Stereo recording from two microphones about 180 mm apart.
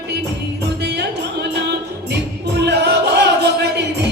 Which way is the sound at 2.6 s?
70° right (ahead or behind).